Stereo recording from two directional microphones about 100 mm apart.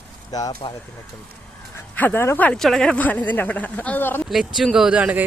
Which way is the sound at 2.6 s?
5° left (ahead or behind).